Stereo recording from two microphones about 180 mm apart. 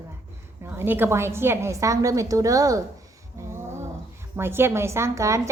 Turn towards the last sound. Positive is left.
turn(degrees=-15)  # may be behind; listen again after turning